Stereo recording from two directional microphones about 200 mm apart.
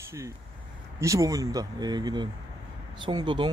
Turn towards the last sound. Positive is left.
turn(degrees=-25)  # may be behind; listen again after turning